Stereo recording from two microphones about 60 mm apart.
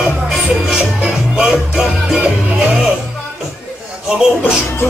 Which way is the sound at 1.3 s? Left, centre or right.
Centre.